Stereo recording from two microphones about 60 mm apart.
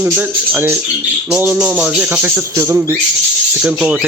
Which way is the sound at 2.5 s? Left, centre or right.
Right.